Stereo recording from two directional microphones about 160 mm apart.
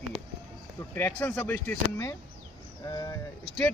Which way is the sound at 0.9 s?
10° left (ahead or behind).